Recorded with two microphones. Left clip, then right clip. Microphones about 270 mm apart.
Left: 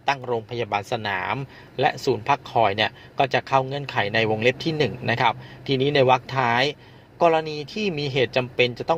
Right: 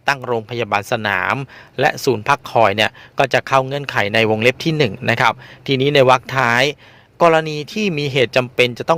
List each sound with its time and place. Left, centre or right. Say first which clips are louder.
0.0 s speech: right 5 dB; right